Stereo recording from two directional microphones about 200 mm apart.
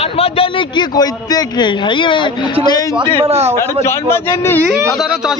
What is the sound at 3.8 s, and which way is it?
Speech, 15° left (ahead or behind).